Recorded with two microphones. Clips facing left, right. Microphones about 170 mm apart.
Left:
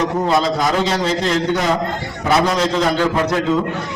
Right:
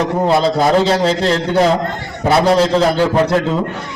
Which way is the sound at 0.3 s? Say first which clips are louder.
Right 6 dB; 30° right (ahead or behind).